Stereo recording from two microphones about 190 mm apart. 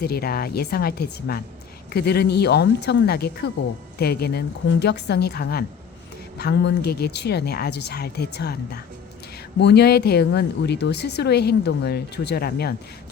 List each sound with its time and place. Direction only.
0.0 s speech: 55° left (ahead or behind)